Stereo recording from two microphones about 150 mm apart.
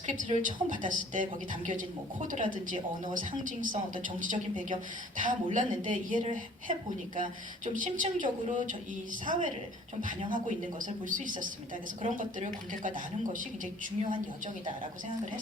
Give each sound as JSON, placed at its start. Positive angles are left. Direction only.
{"t": 0.3, "sound": "a woman's voice", "side_deg": -60}